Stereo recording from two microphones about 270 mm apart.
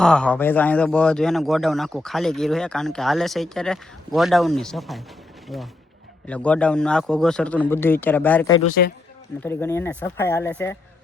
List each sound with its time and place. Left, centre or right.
0.0 s a man's voice: centre
8.8 s speech: left
9.4 s speech: centre